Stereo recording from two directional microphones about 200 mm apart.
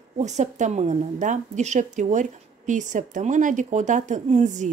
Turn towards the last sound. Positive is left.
turn(degrees=-35)  # may be behind; listen again after turning